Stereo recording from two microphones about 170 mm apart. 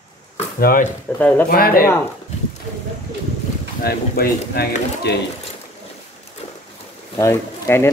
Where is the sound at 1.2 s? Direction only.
10° left (ahead or behind).